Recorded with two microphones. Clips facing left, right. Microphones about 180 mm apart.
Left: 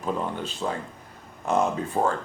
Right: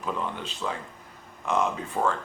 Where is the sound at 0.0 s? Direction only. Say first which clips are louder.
Left 3 dB; 40° left (ahead or behind).